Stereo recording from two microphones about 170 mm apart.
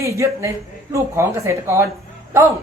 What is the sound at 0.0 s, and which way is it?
A woman's voice, 15° right (ahead or behind).